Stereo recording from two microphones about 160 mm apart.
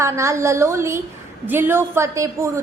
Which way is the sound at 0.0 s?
20° right (ahead or behind).